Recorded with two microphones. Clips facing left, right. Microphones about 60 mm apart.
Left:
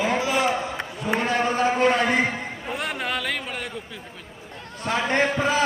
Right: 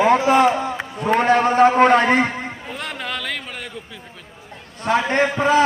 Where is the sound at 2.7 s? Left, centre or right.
Centre.